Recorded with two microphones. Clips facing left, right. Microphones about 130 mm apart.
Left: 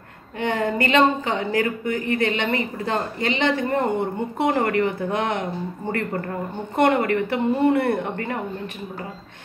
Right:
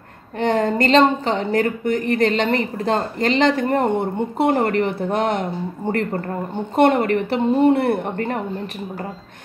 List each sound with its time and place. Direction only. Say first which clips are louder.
0.5 s a woman's voice: right 5 dB; 35° right (ahead or behind)
6.8 s speech: right 3 dB; 30° right (ahead or behind)